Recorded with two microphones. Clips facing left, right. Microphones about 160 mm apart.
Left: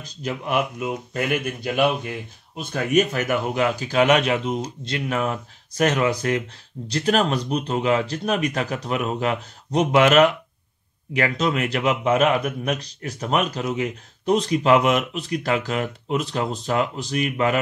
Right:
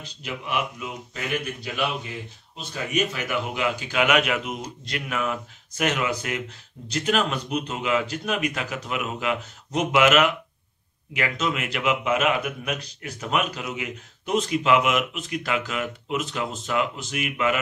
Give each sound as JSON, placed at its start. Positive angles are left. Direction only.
{"t": 0.0, "sound": "a man's voice", "side_deg": 45}